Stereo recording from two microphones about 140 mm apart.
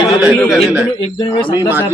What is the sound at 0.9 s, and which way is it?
Speech, 45° left (ahead or behind).